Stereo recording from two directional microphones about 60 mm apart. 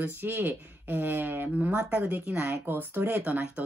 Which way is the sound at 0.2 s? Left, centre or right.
Right.